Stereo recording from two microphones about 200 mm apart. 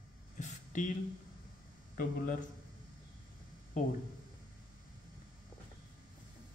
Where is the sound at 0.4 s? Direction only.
40° left (ahead or behind).